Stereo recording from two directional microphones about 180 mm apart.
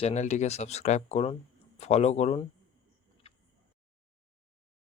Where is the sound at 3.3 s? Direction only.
30° left (ahead or behind).